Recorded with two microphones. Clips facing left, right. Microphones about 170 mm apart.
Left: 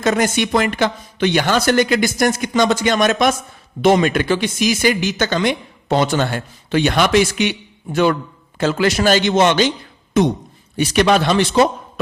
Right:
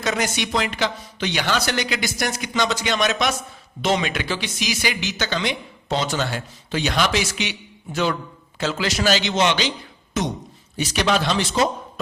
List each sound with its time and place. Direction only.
0.0 s speech: 50° left (ahead or behind)
8.5 s speech: 55° left (ahead or behind)